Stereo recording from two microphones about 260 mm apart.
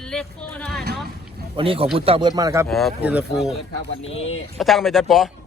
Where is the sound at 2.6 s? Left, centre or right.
Centre.